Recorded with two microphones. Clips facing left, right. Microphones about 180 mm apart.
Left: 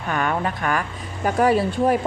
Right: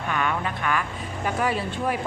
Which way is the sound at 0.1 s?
45° left (ahead or behind).